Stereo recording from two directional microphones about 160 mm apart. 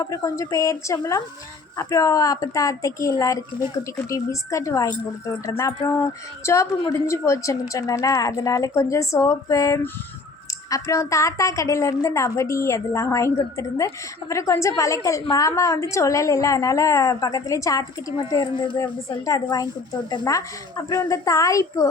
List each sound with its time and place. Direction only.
0.0 s a woman's voice: 20° left (ahead or behind)